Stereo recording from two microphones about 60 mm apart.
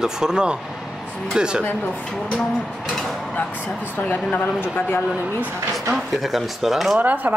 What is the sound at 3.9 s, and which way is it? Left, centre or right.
Speech, left.